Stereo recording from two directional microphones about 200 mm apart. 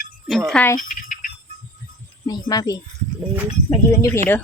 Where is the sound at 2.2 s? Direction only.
20° left (ahead or behind).